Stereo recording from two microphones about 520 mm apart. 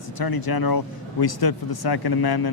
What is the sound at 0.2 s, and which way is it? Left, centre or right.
Speech, left.